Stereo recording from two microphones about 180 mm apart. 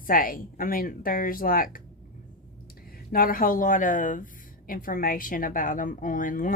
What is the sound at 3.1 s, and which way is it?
Speech, 55° left (ahead or behind).